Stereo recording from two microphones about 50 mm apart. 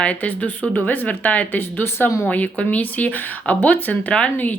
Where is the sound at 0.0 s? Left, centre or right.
Left.